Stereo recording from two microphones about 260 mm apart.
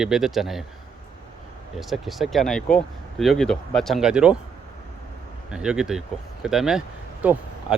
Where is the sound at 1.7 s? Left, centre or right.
Centre.